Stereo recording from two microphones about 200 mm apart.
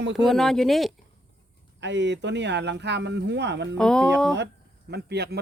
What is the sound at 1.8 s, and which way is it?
A man's voice, 60° right (ahead or behind).